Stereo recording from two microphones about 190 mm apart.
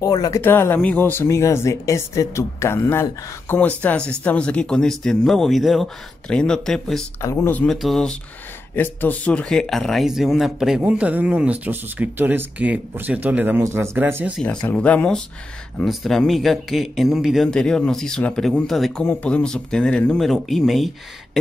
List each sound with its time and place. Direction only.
0.0 s speech: 20° left (ahead or behind); by 7.1 s centre (ahead or behind)
7.2 s speech: 15° left (ahead or behind); by 14.3 s 10° right (ahead or behind)
14.7 s speech: 10° left (ahead or behind)